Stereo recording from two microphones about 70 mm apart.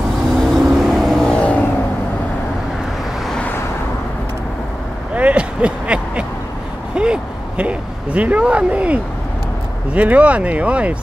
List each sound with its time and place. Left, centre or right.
0.4 s vehicle: centre
1.2 s vehicle: centre
5.1 s a sound: centre
9.9 s speech: centre